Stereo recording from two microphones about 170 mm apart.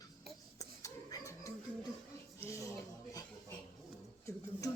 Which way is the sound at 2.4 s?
15° left (ahead or behind).